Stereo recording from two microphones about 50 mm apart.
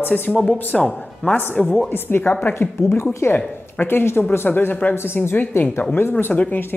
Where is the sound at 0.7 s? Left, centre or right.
Centre.